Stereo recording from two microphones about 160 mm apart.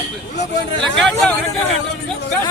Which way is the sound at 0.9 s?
5° left (ahead or behind).